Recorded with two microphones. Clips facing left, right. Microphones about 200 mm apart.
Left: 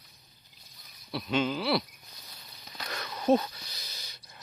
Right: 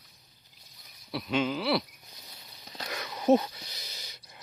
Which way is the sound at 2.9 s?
15° right (ahead or behind).